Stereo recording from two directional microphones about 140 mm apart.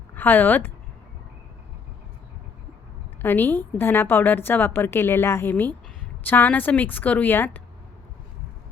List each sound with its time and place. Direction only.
0.1 s speech: 15° left (ahead or behind)
3.2 s a woman's voice: 15° left (ahead or behind)